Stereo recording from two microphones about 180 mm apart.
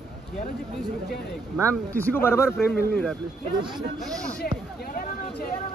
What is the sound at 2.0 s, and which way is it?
Speech, 10° left (ahead or behind).